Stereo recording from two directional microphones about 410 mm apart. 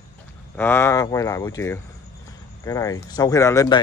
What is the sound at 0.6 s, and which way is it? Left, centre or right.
Speech, centre.